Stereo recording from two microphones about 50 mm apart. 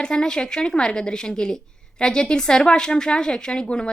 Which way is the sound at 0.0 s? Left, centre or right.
Centre.